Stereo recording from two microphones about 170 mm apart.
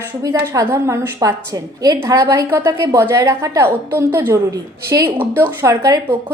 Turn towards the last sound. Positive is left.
turn(degrees=-15)  # may be behind; listen again after turning